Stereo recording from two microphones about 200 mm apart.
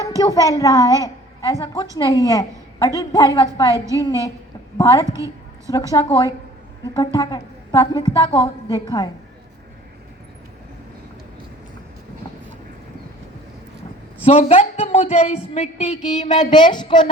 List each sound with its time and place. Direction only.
0.2 s a woman's voice: 15° left (ahead or behind)
4.8 s a woman's voice: 15° left (ahead or behind)
5.1 s a sound: 15° right (ahead or behind)
5.9 s a woman's voice: 15° left (ahead or behind)
14.3 s a woman's voice: 30° left (ahead or behind)
16.3 s a woman's voice: 20° left (ahead or behind)